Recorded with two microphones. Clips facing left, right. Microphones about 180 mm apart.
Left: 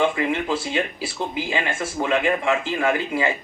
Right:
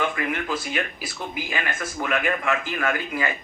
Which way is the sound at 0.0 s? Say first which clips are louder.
Left 5 dB; 25° left (ahead or behind).